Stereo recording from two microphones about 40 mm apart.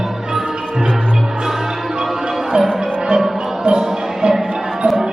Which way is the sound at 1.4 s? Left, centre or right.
Centre.